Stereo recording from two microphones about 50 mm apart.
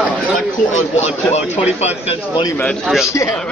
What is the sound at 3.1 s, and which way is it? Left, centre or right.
Speech, left.